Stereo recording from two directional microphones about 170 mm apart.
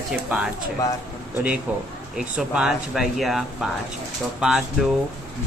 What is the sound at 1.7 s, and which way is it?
Speech, 10° right (ahead or behind).